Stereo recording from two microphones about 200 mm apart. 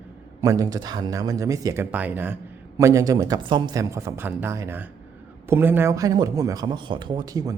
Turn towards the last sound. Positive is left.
turn(degrees=-20)  # may be behind; listen again after turning